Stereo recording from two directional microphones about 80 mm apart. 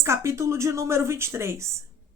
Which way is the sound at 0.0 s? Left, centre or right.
Right.